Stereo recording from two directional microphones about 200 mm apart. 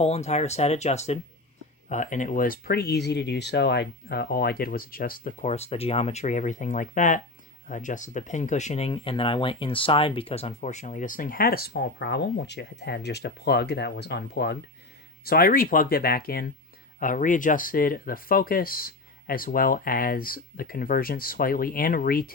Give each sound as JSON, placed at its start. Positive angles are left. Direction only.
{"t": 0.0, "sound": "speech", "side_deg": 30}